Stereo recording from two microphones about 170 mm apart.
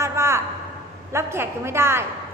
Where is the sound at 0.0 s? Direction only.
15° right (ahead or behind).